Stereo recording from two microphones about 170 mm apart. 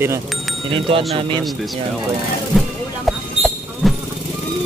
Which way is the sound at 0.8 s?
30° right (ahead or behind).